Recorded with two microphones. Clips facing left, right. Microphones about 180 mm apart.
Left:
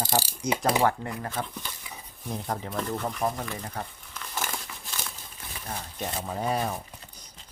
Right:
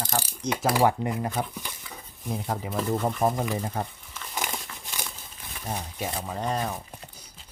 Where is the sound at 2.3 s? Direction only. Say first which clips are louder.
Right 2 dB; 5° right (ahead or behind).